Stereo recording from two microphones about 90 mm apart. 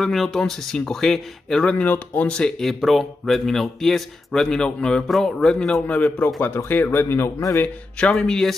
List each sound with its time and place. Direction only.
0.0 s speech: centre (ahead or behind); by 7.6 s 30° left (ahead or behind)
7.6 s speech: 10° left (ahead or behind)